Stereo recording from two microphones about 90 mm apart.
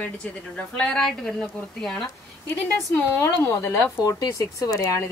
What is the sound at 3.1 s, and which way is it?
A woman's voice, 30° left (ahead or behind).